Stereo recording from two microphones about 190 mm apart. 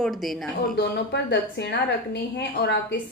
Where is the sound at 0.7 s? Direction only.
60° left (ahead or behind).